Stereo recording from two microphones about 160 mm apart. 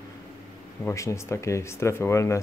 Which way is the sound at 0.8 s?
20° left (ahead or behind).